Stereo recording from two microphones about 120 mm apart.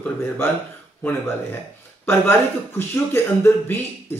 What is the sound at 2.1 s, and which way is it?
Speech, 20° left (ahead or behind).